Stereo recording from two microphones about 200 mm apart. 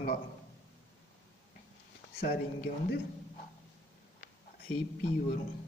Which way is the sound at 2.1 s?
50° left (ahead or behind).